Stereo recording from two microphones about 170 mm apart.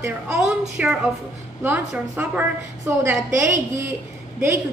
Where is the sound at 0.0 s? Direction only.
5° right (ahead or behind).